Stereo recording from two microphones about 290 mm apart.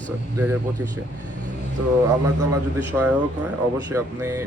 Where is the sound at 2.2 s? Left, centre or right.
Right.